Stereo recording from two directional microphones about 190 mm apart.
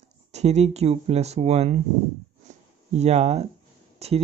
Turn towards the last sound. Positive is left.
turn(degrees=-35)  # may be behind; listen again after turning